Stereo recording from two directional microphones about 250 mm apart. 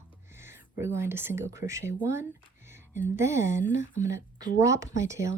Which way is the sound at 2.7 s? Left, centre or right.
Centre.